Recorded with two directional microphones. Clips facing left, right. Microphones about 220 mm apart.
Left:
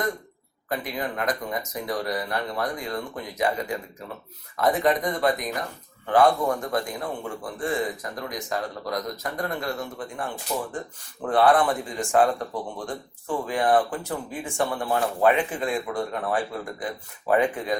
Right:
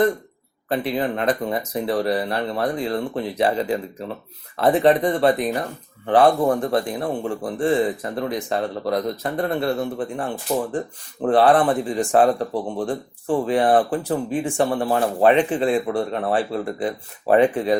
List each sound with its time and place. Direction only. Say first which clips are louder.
0.7 s a man's voice: right 7 dB; 30° right (ahead or behind)
10.5 s speech: right 7 dB; 40° right (ahead or behind)
11.2 s a man's voice: right 4 dB; 30° right (ahead or behind)